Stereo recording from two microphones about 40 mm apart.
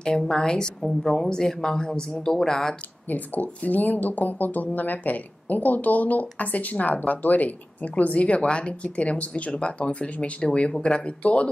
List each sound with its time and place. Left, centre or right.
0.2 s a woman's voice: centre
0.8 s a woman's voice: centre
3.1 s speech: left